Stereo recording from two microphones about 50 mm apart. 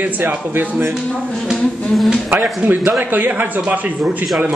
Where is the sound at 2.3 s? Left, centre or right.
Right.